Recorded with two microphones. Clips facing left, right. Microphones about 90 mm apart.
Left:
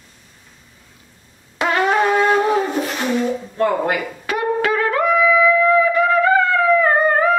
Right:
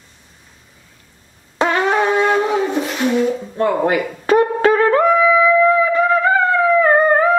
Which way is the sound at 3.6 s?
30° right (ahead or behind).